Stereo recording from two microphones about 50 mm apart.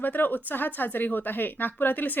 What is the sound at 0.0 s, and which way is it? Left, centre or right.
A woman's voice, left.